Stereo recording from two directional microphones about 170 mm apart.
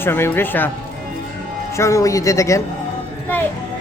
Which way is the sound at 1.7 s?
15° left (ahead or behind).